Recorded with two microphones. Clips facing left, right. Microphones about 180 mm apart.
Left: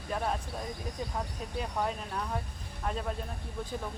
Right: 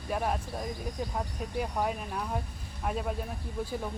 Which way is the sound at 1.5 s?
5° right (ahead or behind).